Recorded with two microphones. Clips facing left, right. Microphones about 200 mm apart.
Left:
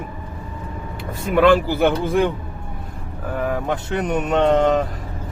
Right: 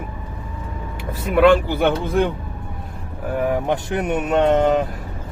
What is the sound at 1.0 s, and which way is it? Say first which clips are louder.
Speech: right 1 dB; centre (ahead or behind).